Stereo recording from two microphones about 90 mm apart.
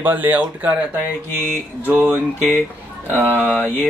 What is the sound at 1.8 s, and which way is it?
Speech, 20° right (ahead or behind).